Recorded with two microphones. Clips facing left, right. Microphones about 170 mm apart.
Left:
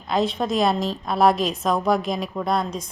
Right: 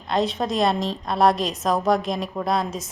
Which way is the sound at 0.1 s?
Centre (ahead or behind).